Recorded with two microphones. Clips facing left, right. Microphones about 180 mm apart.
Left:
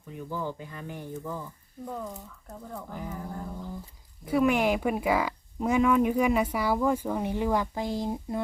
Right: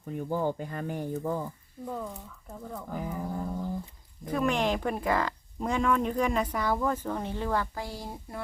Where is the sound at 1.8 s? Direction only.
Centre (ahead or behind).